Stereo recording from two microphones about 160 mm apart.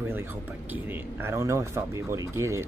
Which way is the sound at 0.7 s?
15° right (ahead or behind).